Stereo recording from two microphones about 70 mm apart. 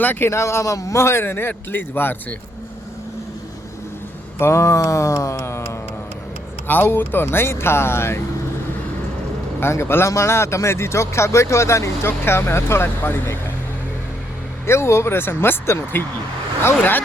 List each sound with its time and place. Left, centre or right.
0.0 s speech: left
0.3 s speech: left
4.4 s a sound: left
6.7 s speech: left
9.6 s speech: left
14.7 s speech: left